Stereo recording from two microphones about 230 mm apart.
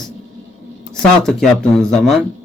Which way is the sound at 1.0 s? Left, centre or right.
Centre.